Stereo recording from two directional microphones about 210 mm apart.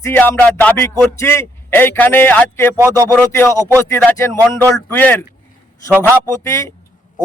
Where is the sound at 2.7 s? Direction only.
15° right (ahead or behind).